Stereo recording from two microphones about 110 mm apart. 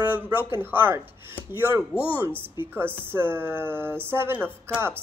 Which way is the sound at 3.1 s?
20° right (ahead or behind).